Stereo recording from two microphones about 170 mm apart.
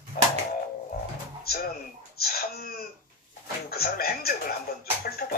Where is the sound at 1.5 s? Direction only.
65° left (ahead or behind).